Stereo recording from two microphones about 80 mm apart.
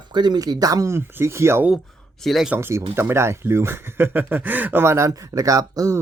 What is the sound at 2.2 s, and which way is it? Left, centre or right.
Speech, centre.